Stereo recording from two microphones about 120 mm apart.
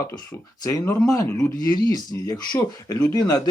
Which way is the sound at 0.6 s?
30° left (ahead or behind).